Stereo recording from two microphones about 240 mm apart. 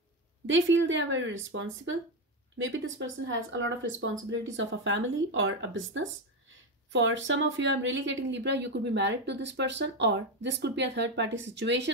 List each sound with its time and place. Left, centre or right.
0.5 s speech: right